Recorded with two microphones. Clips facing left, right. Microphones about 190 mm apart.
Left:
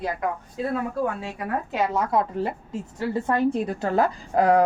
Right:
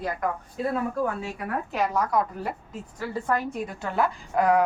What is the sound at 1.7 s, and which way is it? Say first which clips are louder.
A woman's voice: left 1 dB; 25° left (ahead or behind).